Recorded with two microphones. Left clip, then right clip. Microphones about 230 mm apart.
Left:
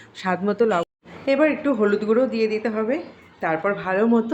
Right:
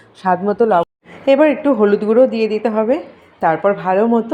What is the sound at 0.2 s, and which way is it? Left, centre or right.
Speech, centre.